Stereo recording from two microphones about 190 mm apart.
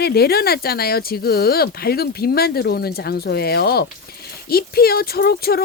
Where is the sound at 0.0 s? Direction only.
55° left (ahead or behind).